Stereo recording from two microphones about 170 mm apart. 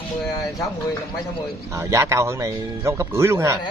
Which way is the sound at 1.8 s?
15° right (ahead or behind).